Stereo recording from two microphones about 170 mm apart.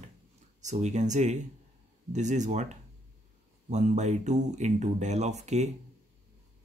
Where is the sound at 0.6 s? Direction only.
45° right (ahead or behind).